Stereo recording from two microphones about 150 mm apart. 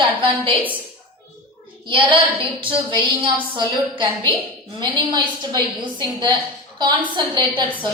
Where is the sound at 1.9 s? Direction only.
35° right (ahead or behind).